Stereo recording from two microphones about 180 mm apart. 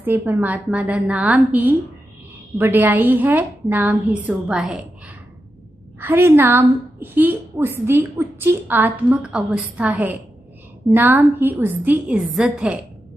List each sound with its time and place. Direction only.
0.0 s a woman's voice: 10° right (ahead or behind)